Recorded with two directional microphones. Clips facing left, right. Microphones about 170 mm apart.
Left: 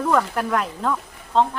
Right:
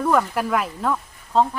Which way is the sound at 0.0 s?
5° right (ahead or behind).